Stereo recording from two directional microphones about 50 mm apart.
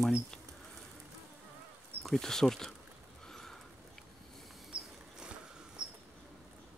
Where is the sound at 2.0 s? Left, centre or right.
Centre.